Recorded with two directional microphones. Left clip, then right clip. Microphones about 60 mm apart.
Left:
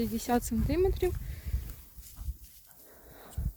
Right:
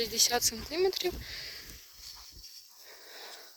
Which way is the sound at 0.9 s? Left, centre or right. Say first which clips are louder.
Left 1 dB; centre.